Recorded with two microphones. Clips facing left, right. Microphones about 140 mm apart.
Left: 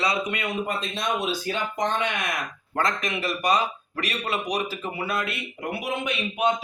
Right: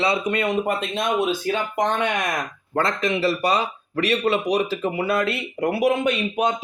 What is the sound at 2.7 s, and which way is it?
Speech, 30° right (ahead or behind).